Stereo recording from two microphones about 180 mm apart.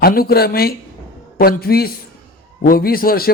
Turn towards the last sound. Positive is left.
turn(degrees=55)  # may be behind; listen again after turning